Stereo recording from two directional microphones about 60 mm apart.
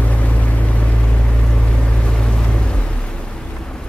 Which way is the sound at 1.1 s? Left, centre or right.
Centre.